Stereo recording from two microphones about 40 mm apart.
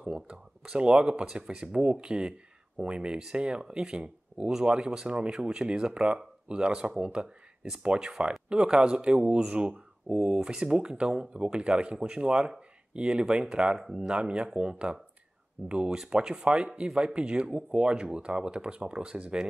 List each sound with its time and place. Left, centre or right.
0.0 s speech: right
14.1 s speech: right